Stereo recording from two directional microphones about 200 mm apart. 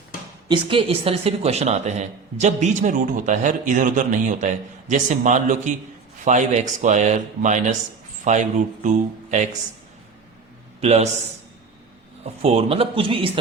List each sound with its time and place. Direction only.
0.4 s speech: 25° right (ahead or behind)
10.8 s a man's voice: 35° right (ahead or behind)
12.2 s speech: 30° right (ahead or behind)